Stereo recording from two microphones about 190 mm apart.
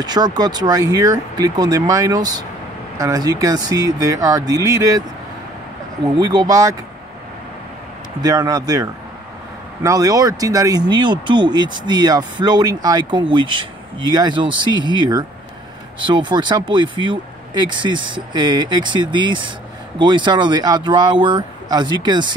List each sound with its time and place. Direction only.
0.0 s speech: 20° right (ahead or behind)
6.1 s speech: 20° right (ahead or behind)
8.2 s speech: 20° right (ahead or behind)
9.8 s speech: 20° right (ahead or behind)